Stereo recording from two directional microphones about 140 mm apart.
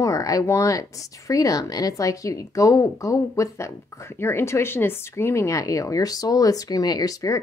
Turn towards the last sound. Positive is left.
turn(degrees=25)  # may be behind; listen again after turning